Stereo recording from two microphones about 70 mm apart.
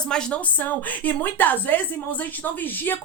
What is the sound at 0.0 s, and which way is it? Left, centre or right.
Speech, centre.